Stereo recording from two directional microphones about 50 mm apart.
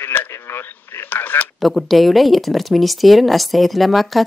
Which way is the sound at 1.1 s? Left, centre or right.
Left.